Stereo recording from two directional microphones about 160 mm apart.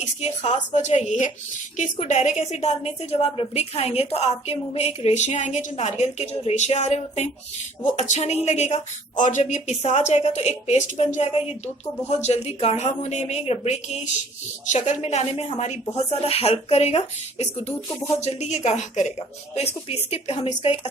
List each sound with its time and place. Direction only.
0.2 s a woman's voice: 45° left (ahead or behind)